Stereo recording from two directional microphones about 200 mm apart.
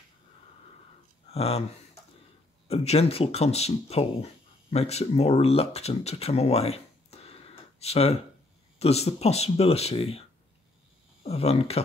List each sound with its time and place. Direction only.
1.3 s speech: 30° left (ahead or behind)
2.7 s speech: 30° left (ahead or behind)
11.2 s speech: 30° left (ahead or behind)